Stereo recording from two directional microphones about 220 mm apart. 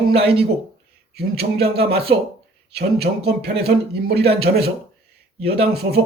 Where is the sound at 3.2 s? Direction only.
45° right (ahead or behind).